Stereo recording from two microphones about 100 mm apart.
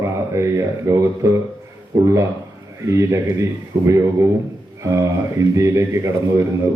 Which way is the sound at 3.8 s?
30° right (ahead or behind).